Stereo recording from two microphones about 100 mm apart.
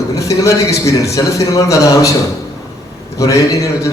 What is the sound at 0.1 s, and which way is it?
A man's voice, 35° left (ahead or behind).